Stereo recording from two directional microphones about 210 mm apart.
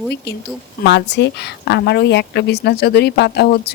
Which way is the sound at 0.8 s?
55° left (ahead or behind).